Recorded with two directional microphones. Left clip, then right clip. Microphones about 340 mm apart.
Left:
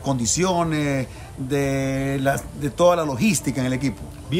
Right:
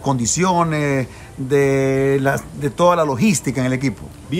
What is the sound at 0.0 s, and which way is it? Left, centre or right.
Speech, centre.